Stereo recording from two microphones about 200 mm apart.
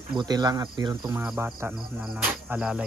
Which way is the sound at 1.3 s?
10° right (ahead or behind).